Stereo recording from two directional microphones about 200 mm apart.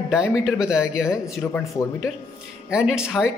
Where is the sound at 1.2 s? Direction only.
15° left (ahead or behind).